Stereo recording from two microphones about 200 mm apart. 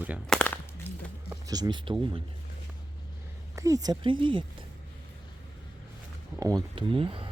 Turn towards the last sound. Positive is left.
turn(degrees=-25)  # may be behind; listen again after turning